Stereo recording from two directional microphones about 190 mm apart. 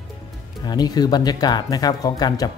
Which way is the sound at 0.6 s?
20° left (ahead or behind).